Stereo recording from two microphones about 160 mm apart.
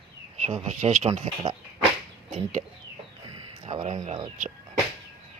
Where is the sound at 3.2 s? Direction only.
30° right (ahead or behind).